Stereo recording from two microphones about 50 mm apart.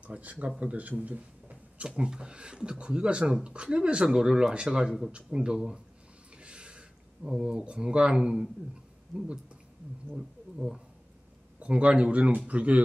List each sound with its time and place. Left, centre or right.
0.0 s speech: right
1.9 s speech: centre
6.3 s a sound: right
7.2 s speech: centre
10.1 s speech: centre
11.6 s speech: right